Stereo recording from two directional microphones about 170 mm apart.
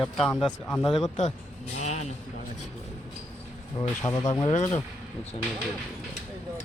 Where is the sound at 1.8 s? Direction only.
40° left (ahead or behind).